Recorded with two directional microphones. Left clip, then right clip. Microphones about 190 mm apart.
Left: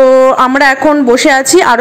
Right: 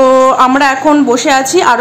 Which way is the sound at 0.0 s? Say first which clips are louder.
Left 1 dB; 25° left (ahead or behind).